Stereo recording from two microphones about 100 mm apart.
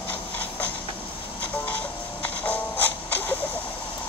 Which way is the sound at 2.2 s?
15° left (ahead or behind).